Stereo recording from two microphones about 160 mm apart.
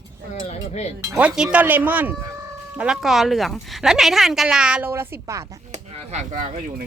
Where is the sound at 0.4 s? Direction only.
45° left (ahead or behind).